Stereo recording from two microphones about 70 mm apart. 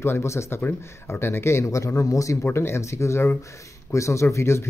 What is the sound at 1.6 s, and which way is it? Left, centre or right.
Speech, left.